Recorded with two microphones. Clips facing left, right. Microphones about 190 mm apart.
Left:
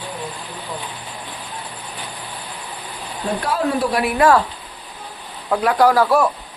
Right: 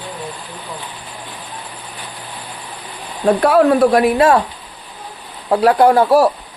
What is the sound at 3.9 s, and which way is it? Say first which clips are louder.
Speech: right 8 dB; 40° right (ahead or behind).